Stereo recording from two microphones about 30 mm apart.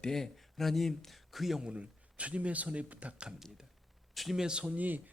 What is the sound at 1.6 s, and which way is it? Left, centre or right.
A man's voice, right.